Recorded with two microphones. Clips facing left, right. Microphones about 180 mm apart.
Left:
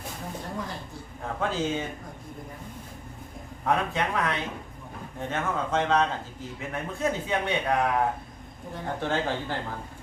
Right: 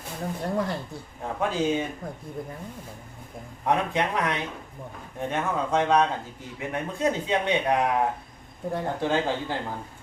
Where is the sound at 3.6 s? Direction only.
20° right (ahead or behind).